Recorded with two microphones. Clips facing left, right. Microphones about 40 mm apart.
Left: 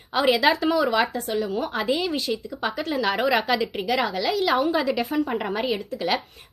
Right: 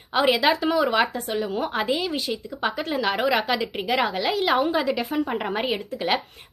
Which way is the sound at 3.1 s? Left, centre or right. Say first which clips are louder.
Left 1 dB; centre.